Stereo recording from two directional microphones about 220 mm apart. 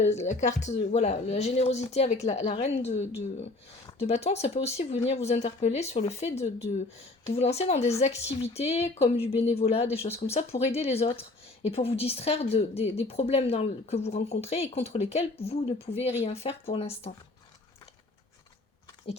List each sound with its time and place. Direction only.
0.0 s a woman's voice: 30° left (ahead or behind)